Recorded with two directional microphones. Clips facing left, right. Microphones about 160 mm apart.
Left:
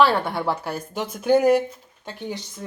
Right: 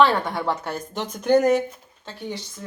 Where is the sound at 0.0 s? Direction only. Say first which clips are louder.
Even; 5° left (ahead or behind).